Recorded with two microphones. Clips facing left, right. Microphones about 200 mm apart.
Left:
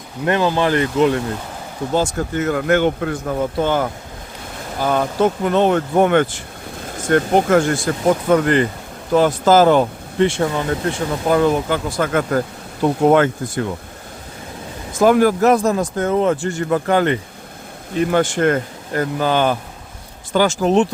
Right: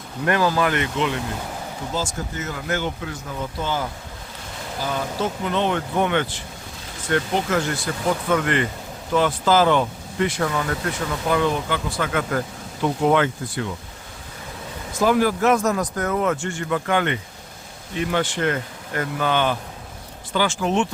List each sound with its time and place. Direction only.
0.3 s speech: 25° left (ahead or behind); by 1.2 s 40° left (ahead or behind)
1.9 s speech: 60° left (ahead or behind); by 13.7 s 45° left (ahead or behind)
14.9 s speech: 50° left (ahead or behind)